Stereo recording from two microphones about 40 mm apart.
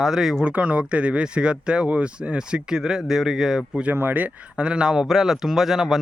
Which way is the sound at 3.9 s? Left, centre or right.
Right.